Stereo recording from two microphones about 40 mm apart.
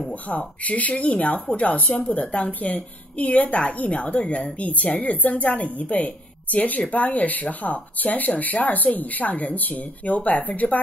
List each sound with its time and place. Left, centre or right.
0.1 s a woman's voice: left